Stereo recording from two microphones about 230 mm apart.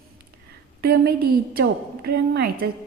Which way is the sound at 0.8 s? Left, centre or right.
Right.